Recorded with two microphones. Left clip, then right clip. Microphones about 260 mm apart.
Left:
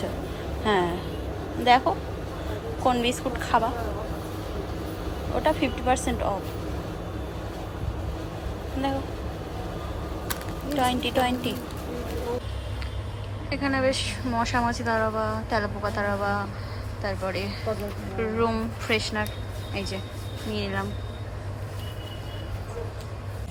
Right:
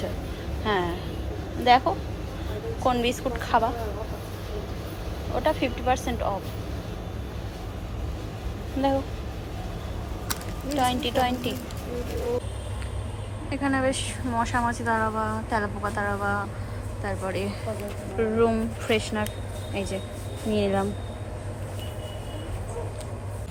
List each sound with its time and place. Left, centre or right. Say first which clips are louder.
0.6 s a sound: left 2 dB; centre
1.6 s speech: even; centre
5.3 s speech: left 1 dB; centre
10.8 s speech: even; centre
13.5 s a woman's voice: left 1 dB; centre